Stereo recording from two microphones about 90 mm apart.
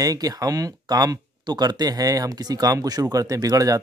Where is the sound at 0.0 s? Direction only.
40° right (ahead or behind).